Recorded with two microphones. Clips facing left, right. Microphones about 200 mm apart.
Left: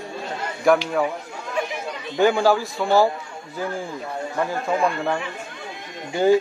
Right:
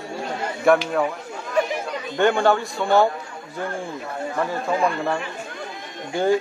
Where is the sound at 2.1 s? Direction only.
Centre (ahead or behind).